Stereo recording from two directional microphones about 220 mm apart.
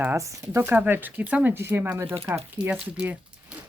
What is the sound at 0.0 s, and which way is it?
Speech, 10° right (ahead or behind).